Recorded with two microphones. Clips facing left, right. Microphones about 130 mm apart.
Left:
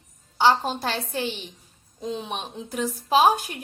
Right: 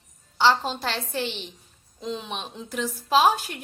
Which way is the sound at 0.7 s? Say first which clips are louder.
Left 2 dB; 45° left (ahead or behind).